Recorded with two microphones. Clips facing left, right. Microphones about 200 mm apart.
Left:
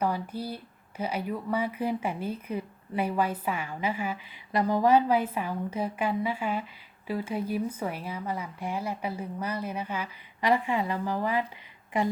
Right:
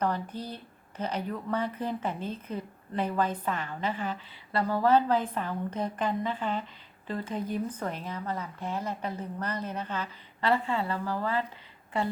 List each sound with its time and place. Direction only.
0.0 s speech: 10° left (ahead or behind)